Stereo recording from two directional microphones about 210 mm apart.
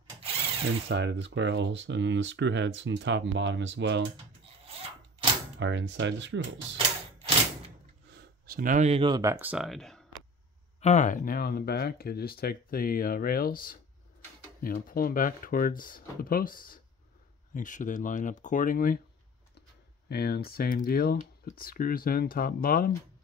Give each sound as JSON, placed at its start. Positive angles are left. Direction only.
{"t": 0.8, "sound": "speech", "side_deg": -55}
{"t": 5.6, "sound": "speech", "side_deg": -60}
{"t": 7.2, "sound": "a sound", "side_deg": -30}
{"t": 8.5, "sound": "speech", "side_deg": -40}
{"t": 10.8, "sound": "speech", "side_deg": 35}
{"t": 20.1, "sound": "speech", "side_deg": 50}